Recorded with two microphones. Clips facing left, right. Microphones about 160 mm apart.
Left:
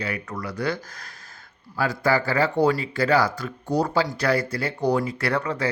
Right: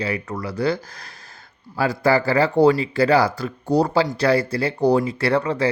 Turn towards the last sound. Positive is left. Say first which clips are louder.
# right 5 dB
turn(degrees=-30)  # may be behind; listen again after turning